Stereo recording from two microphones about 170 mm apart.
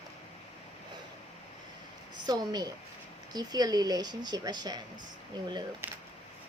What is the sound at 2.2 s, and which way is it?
A woman's voice, 25° right (ahead or behind).